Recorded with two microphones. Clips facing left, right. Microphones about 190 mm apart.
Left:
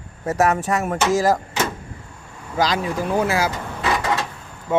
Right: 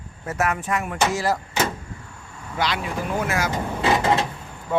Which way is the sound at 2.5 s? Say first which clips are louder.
Left 5 dB; 40° left (ahead or behind).